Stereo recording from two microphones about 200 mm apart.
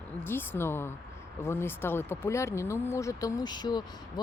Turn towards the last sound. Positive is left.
turn(degrees=20)  # may be behind; listen again after turning